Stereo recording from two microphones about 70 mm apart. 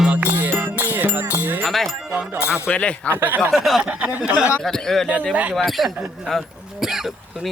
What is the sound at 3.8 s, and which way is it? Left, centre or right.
Speech, right.